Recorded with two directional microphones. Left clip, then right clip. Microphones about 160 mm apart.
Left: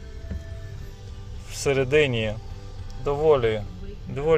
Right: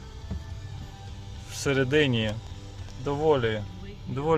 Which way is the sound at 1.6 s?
15° right (ahead or behind).